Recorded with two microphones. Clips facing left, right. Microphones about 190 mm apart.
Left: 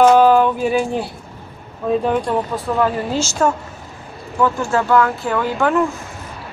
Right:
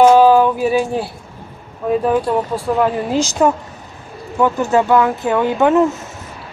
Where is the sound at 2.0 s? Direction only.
10° right (ahead or behind).